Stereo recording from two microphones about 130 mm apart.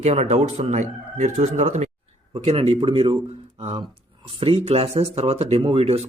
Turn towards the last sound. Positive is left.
turn(degrees=-50)  # may be behind; listen again after turning